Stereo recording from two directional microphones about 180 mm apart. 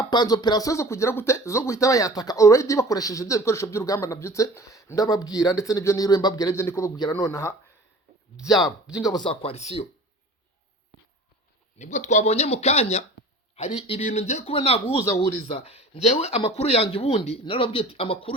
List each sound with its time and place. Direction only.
0.0 s speech: 25° left (ahead or behind)
8.4 s speech: centre (ahead or behind)
9.0 s speech: 25° left (ahead or behind)
11.8 s speech: 40° left (ahead or behind)
14.8 s speech: 15° left (ahead or behind)
15.6 s speech: 35° left (ahead or behind)